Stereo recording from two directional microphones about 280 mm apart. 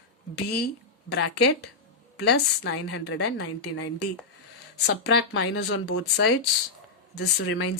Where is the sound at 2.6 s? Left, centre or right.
Left.